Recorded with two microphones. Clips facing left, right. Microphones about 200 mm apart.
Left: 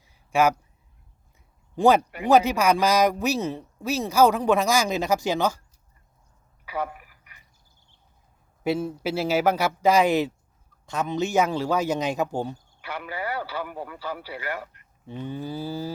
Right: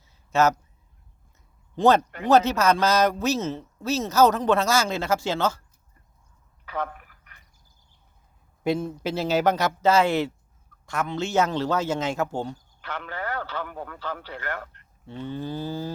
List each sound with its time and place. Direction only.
0.0 s a sound: 10° left (ahead or behind)
1.7 s speech: 10° left (ahead or behind)
6.7 s telephone: 10° left (ahead or behind)
8.6 s speech: 5° left (ahead or behind)